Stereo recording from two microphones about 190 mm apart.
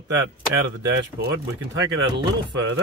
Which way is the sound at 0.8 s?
65° right (ahead or behind).